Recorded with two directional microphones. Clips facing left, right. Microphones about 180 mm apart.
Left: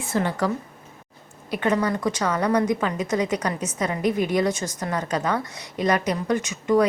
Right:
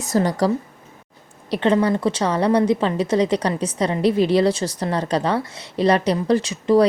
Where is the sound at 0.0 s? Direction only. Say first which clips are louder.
Right 5 dB; 40° right (ahead or behind).